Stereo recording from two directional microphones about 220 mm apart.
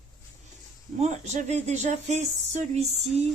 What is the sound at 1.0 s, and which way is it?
Speech, 30° right (ahead or behind).